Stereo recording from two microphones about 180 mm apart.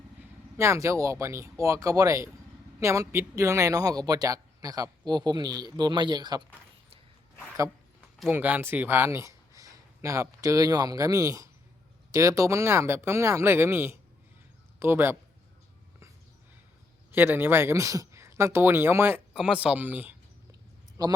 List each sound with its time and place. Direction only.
0.5 s a man's voice: 15° right (ahead or behind)
8.3 s speech: 10° right (ahead or behind)
17.1 s speech: 10° right (ahead or behind)
21.0 s a man's voice: 20° right (ahead or behind)